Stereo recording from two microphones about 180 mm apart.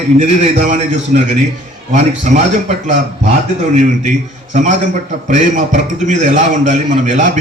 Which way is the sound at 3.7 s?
40° right (ahead or behind).